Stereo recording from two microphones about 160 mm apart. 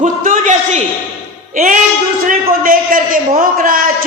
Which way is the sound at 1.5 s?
55° right (ahead or behind).